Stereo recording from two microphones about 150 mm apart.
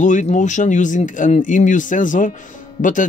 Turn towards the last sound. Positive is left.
turn(degrees=60)  # may be behind; listen again after turning